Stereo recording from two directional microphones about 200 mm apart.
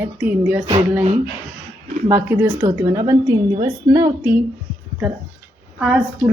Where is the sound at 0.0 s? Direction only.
10° right (ahead or behind).